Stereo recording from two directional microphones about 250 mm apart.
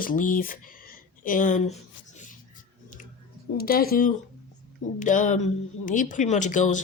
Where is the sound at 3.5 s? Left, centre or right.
Left.